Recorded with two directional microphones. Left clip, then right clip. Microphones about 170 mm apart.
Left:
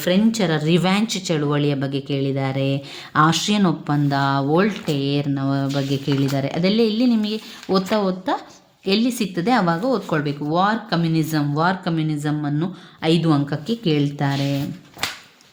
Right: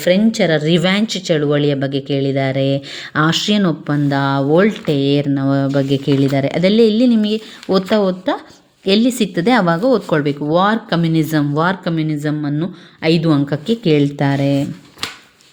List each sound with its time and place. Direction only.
0.0 s speech: 20° right (ahead or behind)